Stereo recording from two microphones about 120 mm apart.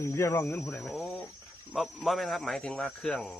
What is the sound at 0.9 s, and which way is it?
Speech, 5° right (ahead or behind).